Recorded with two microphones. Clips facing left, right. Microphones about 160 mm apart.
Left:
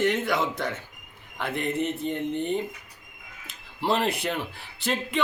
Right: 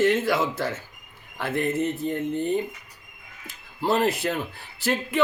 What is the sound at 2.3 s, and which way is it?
Speech, 20° left (ahead or behind).